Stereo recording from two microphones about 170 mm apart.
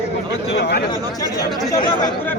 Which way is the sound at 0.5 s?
80° left.